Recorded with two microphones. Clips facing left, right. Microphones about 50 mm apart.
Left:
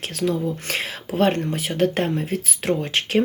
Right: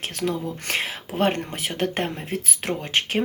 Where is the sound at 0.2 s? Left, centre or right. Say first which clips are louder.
Left 4 dB; right.